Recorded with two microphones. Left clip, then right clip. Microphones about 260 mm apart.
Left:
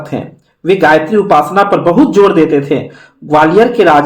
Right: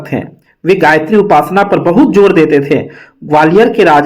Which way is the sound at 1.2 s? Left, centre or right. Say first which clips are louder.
Even; right.